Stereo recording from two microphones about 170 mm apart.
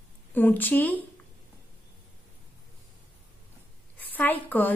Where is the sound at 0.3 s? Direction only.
10° left (ahead or behind).